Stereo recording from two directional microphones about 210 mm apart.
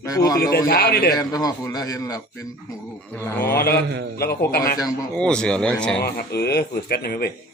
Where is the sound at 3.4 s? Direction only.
45° left (ahead or behind).